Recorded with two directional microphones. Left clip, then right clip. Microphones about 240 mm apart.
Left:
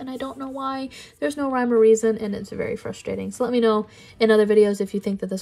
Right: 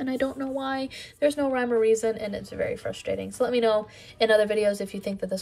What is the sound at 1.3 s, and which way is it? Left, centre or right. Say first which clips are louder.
Speech: left 3 dB; centre.